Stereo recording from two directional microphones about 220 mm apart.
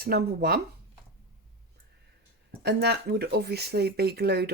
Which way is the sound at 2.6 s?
50° right (ahead or behind).